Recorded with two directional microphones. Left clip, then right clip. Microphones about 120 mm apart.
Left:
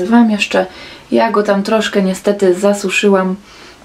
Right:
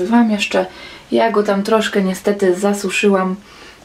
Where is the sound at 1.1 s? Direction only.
20° left (ahead or behind).